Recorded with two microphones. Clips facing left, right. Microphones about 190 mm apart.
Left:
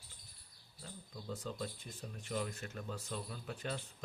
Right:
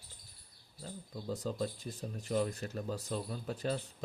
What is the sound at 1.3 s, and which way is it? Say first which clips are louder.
Speech: right 6 dB; 35° right (ahead or behind).